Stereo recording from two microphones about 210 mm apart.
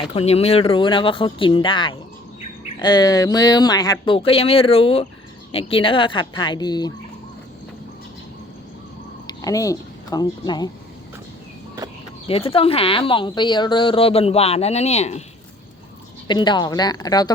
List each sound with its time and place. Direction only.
0.0 s a woman's voice: 30° left (ahead or behind)
9.2 s speech: 15° left (ahead or behind)
12.3 s a woman's voice: 25° left (ahead or behind)
16.2 s a woman's voice: 20° left (ahead or behind)